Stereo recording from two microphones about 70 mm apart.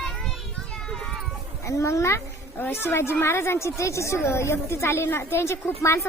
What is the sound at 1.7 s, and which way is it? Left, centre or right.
Speech, left.